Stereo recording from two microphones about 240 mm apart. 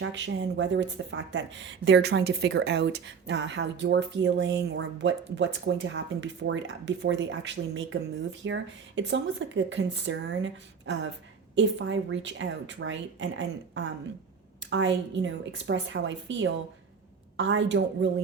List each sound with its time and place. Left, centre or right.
0.0 s speech: right